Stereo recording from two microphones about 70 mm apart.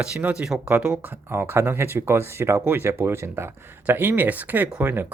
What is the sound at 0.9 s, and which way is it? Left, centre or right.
Speech, centre.